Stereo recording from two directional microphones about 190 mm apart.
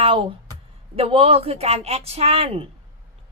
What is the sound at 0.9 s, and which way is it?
A woman's voice, 30° right (ahead or behind).